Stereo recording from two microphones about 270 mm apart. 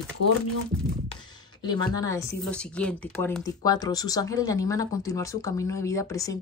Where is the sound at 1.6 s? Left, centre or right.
Centre.